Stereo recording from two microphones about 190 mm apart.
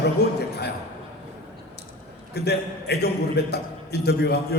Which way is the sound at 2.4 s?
60° left (ahead or behind).